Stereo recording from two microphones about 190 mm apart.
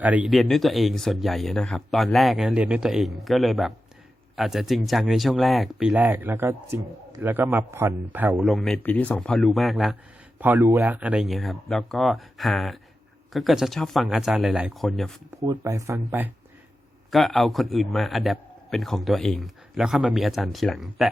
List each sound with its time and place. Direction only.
0.0 s a man's voice: 5° right (ahead or behind)
10.4 s a man's voice: 10° right (ahead or behind)
15.4 s speech: 15° right (ahead or behind)
17.1 s a man's voice: centre (ahead or behind)